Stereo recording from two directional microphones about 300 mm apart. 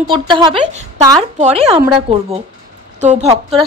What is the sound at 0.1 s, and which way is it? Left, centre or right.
A woman's voice, centre.